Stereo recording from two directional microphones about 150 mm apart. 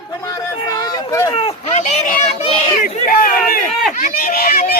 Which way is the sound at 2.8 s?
75° left (ahead or behind).